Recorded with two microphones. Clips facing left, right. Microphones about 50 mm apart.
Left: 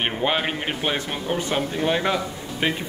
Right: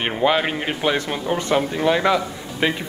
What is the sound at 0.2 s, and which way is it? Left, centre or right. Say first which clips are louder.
Speech: right 6 dB; right.